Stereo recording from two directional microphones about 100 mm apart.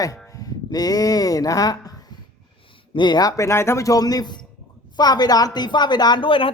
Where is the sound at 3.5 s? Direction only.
25° left (ahead or behind).